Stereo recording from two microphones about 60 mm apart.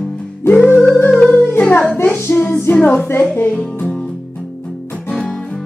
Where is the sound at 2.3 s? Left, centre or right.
Left.